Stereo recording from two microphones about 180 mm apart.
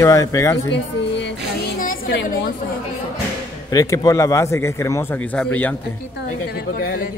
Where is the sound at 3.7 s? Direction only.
20° left (ahead or behind).